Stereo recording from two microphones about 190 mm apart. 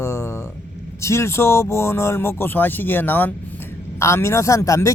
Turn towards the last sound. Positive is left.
turn(degrees=15)  # may be behind; listen again after turning